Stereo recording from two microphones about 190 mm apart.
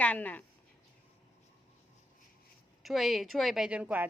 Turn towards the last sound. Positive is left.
turn(degrees=-10)  # may be behind; listen again after turning